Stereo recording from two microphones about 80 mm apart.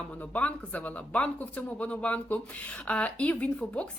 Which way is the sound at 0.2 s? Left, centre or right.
Centre.